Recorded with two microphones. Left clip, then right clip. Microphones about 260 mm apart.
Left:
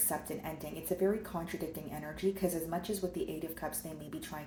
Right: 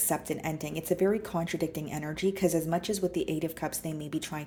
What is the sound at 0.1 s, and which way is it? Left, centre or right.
Speech, right.